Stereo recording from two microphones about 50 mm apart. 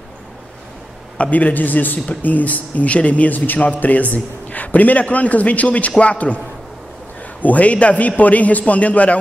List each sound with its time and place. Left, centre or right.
1.1 s a man's voice: left
7.4 s a man's voice: left